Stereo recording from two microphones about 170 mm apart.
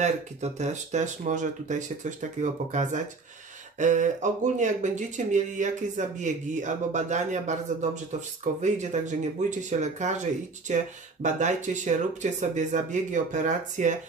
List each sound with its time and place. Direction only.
0.0 s speech: 45° right (ahead or behind)